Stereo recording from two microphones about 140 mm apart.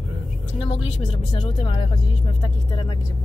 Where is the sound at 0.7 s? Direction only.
45° left (ahead or behind).